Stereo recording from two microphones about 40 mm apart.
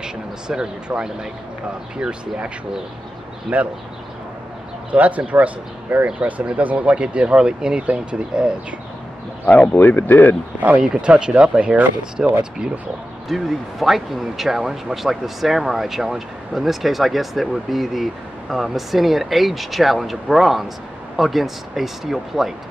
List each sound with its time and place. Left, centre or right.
0.0 s speech: centre
3.5 s speech: right
4.9 s speech: right
7.3 s speech: centre
9.5 s speech: left
10.8 s speech: right
13.3 s speech: centre